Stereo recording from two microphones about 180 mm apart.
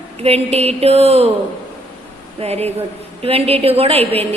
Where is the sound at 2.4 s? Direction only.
35° right (ahead or behind).